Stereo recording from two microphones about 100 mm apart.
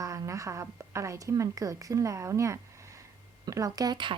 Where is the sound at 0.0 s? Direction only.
35° right (ahead or behind).